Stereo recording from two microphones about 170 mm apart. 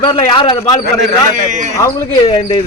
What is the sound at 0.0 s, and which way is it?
Speech, 25° left (ahead or behind).